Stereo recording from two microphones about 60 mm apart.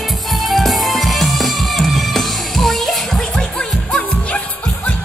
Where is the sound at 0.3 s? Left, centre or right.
Centre.